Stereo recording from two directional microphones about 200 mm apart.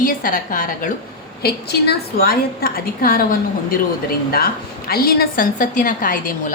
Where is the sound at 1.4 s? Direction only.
50° left (ahead or behind).